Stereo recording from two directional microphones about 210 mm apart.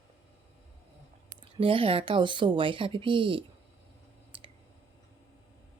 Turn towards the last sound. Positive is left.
turn(degrees=-25)  # may be behind; listen again after turning